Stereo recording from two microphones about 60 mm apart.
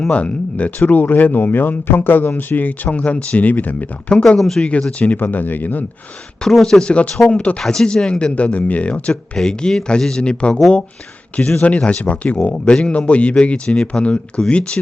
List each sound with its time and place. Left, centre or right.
0.1 s speech: left
4.1 s speech: centre
5.1 s speech: left
6.4 s speech: centre
7.6 s speech: centre